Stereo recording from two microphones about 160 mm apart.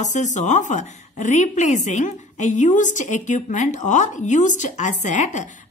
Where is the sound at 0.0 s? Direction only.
50° left (ahead or behind).